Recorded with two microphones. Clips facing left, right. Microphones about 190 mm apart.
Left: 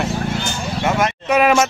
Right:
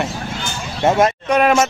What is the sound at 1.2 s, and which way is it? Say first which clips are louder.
Speech: left 4 dB; 5° left (ahead or behind).